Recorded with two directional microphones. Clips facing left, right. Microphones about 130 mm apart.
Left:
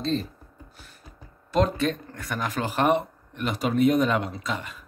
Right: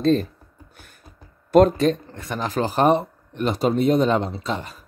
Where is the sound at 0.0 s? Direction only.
55° right (ahead or behind).